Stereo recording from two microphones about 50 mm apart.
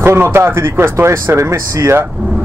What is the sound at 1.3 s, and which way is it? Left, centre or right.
Speech, right.